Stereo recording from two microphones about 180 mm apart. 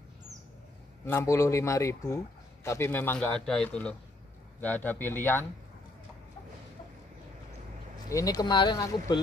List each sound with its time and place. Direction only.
1.0 s a man's voice: 15° left (ahead or behind)
8.1 s speech: 20° left (ahead or behind)